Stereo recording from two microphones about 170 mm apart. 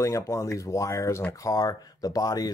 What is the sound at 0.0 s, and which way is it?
Speech, 20° left (ahead or behind).